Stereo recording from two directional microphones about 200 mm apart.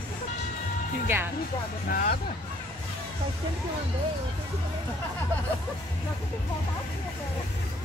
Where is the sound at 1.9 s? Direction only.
45° left (ahead or behind).